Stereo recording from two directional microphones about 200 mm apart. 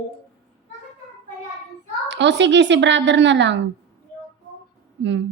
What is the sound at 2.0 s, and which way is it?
Speech, 60° right (ahead or behind).